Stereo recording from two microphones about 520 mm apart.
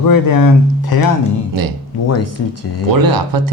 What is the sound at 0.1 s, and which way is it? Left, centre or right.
Speech, left.